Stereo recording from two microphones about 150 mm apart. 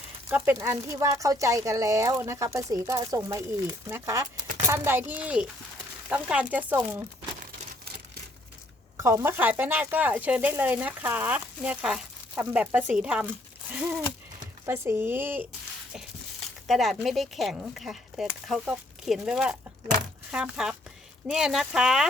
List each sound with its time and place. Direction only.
0.3 s speech: 15° right (ahead or behind)
9.0 s speech: 20° right (ahead or behind)
13.7 s a sound: 10° right (ahead or behind)
14.7 s speech: 15° right (ahead or behind)
16.6 s speech: centre (ahead or behind)